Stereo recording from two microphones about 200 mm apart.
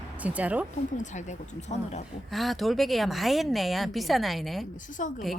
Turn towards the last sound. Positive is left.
turn(degrees=40)  # may be behind; listen again after turning